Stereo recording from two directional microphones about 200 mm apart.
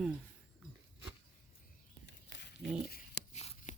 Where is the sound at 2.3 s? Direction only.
60° left (ahead or behind).